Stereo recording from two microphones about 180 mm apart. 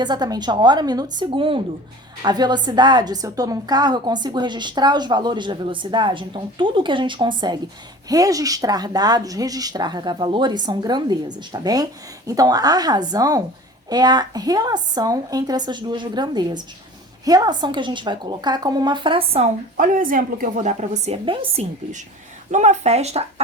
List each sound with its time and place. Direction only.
0.0 s a woman's voice: 25° right (ahead or behind)
19.7 s a woman's voice: 50° right (ahead or behind)